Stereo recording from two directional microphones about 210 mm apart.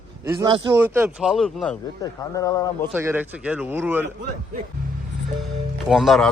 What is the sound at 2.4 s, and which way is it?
Speech, 15° left (ahead or behind).